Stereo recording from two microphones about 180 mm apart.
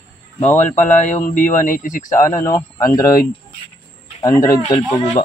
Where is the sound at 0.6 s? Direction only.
40° left (ahead or behind).